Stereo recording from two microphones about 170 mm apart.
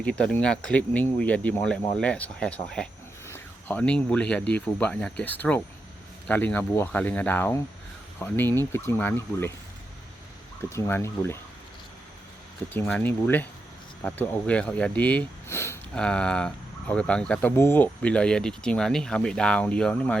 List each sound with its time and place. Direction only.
0.0 s speech: 5° left (ahead or behind)
10.6 s speech: 15° left (ahead or behind)
12.7 s speech: 10° left (ahead or behind)